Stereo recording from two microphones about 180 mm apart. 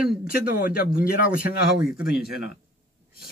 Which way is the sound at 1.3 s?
50° left (ahead or behind).